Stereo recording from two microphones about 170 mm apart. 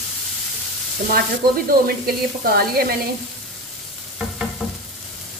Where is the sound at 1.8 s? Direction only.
60° right (ahead or behind).